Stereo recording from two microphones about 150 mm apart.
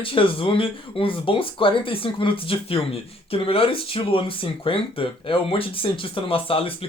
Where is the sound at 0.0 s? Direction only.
35° left (ahead or behind).